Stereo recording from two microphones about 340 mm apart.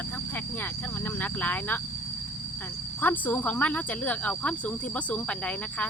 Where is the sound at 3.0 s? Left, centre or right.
Centre.